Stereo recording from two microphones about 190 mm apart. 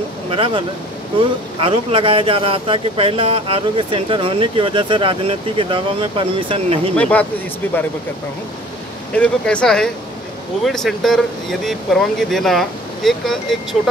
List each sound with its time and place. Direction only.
0.3 s speech: 30° right (ahead or behind)
7.0 s speech: 10° left (ahead or behind)
9.1 s speech: 5° left (ahead or behind)